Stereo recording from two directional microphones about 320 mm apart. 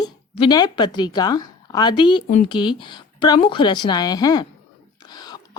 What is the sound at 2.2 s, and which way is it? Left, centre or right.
Speech, left.